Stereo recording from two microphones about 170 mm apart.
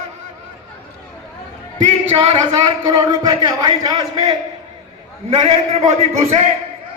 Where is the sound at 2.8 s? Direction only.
20° right (ahead or behind).